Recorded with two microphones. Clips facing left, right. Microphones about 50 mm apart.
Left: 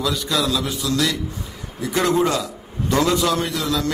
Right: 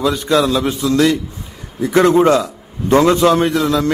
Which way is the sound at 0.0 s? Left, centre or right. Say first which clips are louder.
Right 7 dB; right.